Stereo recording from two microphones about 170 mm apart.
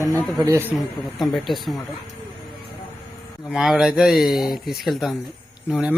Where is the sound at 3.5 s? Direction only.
Centre (ahead or behind).